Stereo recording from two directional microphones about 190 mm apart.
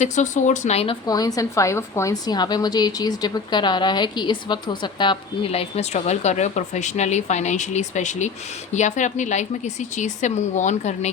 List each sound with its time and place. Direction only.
0.0 s a woman's voice: 40° left (ahead or behind)
1.0 s a woman's voice: 20° left (ahead or behind); by 11.1 s 35° left (ahead or behind)